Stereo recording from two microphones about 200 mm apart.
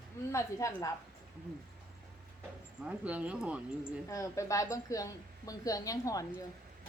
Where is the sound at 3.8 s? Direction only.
15° left (ahead or behind).